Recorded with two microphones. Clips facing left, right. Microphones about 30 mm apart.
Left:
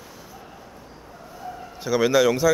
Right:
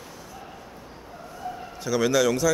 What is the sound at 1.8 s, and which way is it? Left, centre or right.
Speech, centre.